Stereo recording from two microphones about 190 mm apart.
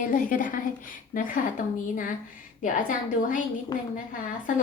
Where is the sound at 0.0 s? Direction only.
45° left (ahead or behind).